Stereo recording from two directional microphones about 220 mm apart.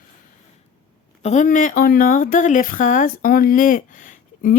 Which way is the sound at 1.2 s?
35° left (ahead or behind).